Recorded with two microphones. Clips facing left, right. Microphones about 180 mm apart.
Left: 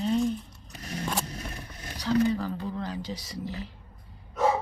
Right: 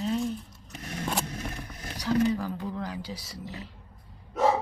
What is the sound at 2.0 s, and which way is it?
Speech, 10° right (ahead or behind).